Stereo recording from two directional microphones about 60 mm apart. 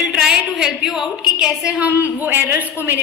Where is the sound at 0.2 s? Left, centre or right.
Centre.